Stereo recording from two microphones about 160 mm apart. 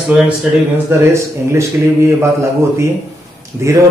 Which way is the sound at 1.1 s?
15° right (ahead or behind).